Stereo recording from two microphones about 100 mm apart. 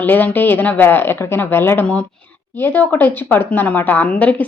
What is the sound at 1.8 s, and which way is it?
Speech, 10° left (ahead or behind).